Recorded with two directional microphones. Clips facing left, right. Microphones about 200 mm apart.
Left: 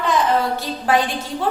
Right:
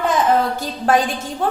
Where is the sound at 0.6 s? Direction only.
45° right (ahead or behind).